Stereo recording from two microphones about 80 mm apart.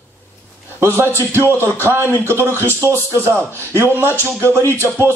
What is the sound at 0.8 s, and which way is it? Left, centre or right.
A man's voice, right.